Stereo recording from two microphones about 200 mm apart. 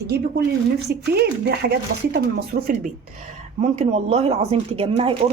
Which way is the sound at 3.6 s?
35° right (ahead or behind).